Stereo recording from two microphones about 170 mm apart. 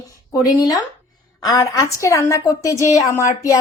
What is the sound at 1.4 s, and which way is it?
A woman's voice, 20° left (ahead or behind).